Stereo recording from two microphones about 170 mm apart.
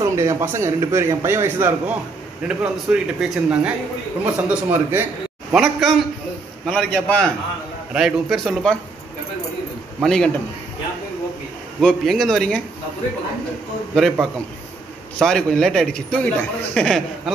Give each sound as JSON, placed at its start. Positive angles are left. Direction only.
{"t": 0.0, "sound": "a man's voice", "side_deg": -15}
{"t": 10.0, "sound": "speech", "side_deg": 5}
{"t": 11.8, "sound": "speech", "side_deg": 0}
{"t": 13.9, "sound": "speech", "side_deg": 0}